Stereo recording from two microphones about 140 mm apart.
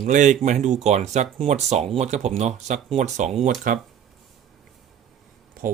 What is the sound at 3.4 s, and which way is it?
Speech, 70° right (ahead or behind).